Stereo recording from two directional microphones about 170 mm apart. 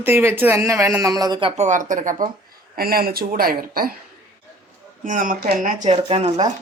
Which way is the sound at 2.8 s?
60° right (ahead or behind).